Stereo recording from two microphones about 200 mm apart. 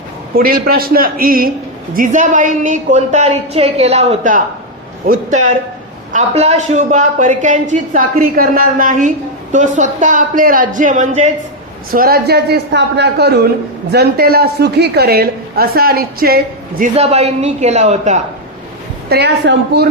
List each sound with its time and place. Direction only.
0.3 s a woman's voice: 45° right (ahead or behind)
11.9 s a man's voice: 50° right (ahead or behind)
16.9 s a woman's voice: 30° right (ahead or behind)
19.0 s a woman's voice: 55° right (ahead or behind)